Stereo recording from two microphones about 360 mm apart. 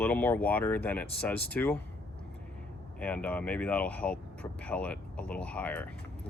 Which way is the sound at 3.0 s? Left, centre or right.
Centre.